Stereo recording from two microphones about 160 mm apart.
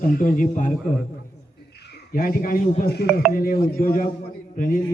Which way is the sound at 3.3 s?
60° left (ahead or behind).